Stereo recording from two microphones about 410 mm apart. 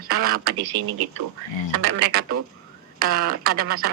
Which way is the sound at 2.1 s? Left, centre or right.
Right.